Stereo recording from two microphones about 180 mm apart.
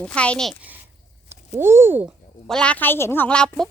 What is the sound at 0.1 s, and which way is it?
Speech, 5° left (ahead or behind).